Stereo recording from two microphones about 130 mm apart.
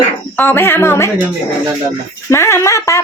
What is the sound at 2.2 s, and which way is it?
Speech, 20° left (ahead or behind).